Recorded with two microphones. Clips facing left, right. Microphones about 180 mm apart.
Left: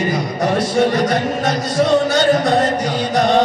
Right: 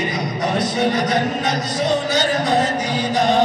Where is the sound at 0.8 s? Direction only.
50° left (ahead or behind).